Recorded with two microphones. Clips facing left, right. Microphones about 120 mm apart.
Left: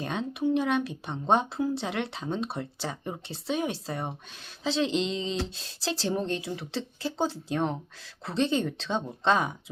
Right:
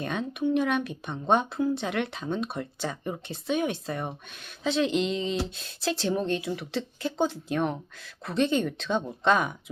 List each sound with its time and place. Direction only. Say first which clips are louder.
0.0 s a woman's voice: even; 25° left (ahead or behind)